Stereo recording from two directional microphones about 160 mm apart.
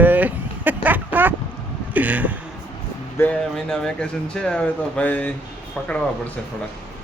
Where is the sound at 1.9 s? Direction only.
10° right (ahead or behind).